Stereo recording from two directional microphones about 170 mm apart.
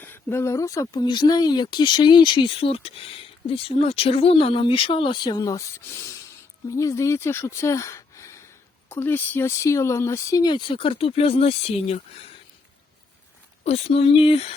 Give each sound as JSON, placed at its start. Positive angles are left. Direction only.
{"t": 0.0, "sound": "speech", "side_deg": 10}
{"t": 13.7, "sound": "speech", "side_deg": 35}